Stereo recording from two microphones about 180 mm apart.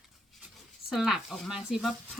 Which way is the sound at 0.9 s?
Centre (ahead or behind).